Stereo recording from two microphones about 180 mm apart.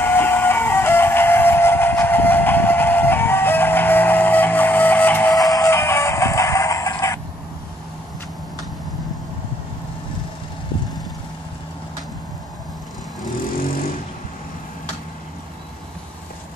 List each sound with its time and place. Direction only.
0.0 s music: 10° left (ahead or behind)
5.3 s music: 20° left (ahead or behind)